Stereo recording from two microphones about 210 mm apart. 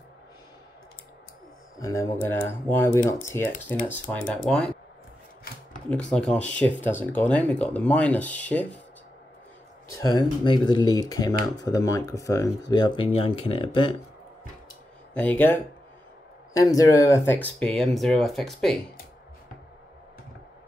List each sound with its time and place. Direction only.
1.8 s speech: 15° left (ahead or behind)
5.9 s speech: 5° left (ahead or behind)
9.9 s speech: 20° left (ahead or behind)
15.1 s speech: 5° left (ahead or behind)